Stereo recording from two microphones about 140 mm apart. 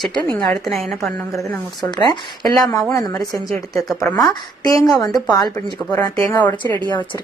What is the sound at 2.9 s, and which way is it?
A woman's voice, 25° left (ahead or behind).